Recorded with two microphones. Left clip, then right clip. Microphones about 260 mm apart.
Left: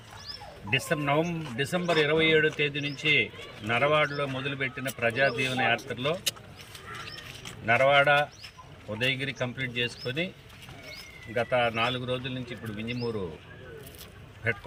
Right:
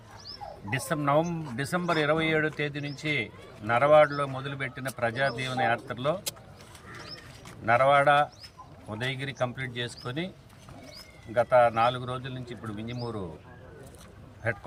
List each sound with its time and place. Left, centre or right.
0.7 s speech: centre
7.6 s speech: centre
11.3 s speech: centre